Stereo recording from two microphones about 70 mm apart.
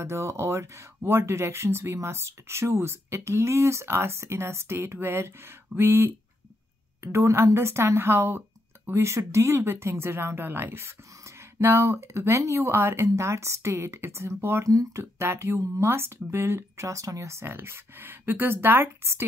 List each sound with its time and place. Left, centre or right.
0.0 s speech: right
14.7 s speech: right
15.1 s speech: right